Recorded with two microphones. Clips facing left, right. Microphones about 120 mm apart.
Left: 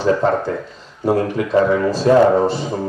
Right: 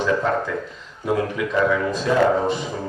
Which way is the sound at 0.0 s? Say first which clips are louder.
Left 5 dB; 35° left (ahead or behind).